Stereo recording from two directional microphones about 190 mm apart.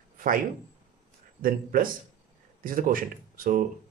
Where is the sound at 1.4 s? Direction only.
50° right (ahead or behind).